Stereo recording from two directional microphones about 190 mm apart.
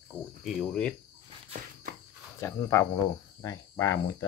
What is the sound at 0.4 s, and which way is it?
Speech, centre (ahead or behind).